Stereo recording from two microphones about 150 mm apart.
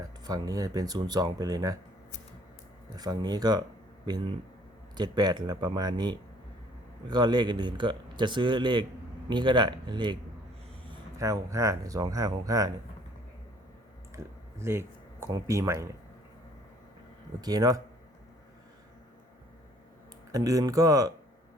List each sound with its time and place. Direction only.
0.0 s speech: 25° right (ahead or behind)
2.9 s speech: 25° right (ahead or behind)
4.9 s speech: 30° right (ahead or behind)
11.2 s speech: 20° right (ahead or behind)
14.1 s speech: 20° right (ahead or behind)
17.4 s speech: 25° right (ahead or behind)
20.3 s speech: 20° right (ahead or behind)